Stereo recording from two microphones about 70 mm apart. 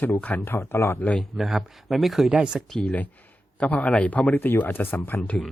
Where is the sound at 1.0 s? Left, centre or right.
Centre.